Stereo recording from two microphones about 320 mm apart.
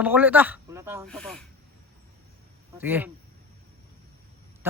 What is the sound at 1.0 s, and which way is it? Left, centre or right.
Speech, centre.